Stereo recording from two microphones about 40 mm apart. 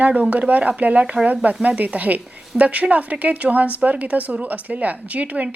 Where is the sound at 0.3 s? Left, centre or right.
Right.